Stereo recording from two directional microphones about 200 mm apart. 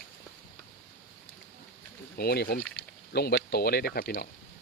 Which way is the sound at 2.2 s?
50° left (ahead or behind).